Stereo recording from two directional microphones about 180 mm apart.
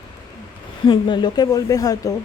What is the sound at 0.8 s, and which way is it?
A woman's voice, 25° left (ahead or behind).